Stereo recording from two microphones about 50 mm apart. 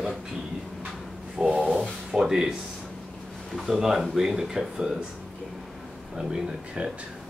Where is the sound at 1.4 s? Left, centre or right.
Centre.